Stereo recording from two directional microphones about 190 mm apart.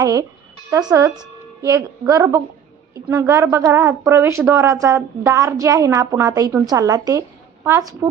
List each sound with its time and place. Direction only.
0.0 s a woman's voice: 20° right (ahead or behind)
1.6 s a woman's voice: 15° right (ahead or behind)